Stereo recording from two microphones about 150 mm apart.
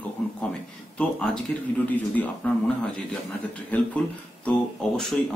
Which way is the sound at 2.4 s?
10° left (ahead or behind).